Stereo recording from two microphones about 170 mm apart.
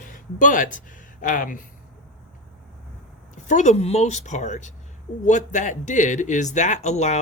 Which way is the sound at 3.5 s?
45° left (ahead or behind).